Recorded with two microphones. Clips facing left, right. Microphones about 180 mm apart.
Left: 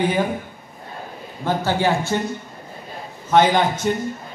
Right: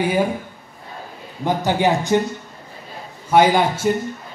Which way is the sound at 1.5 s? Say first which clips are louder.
Right 2 dB; 15° right (ahead or behind).